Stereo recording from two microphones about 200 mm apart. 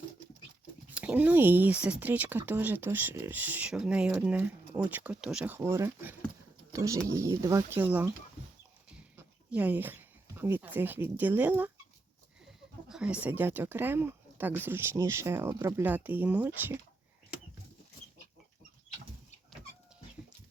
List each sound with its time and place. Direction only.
0.9 s speech: 5° right (ahead or behind)
9.1 s speech: 10° right (ahead or behind)
12.9 s speech: 5° right (ahead or behind)